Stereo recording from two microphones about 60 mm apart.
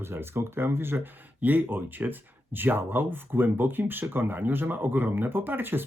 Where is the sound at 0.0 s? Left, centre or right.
Right.